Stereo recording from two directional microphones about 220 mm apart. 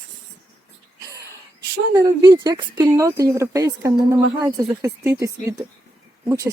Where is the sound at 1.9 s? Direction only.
15° right (ahead or behind).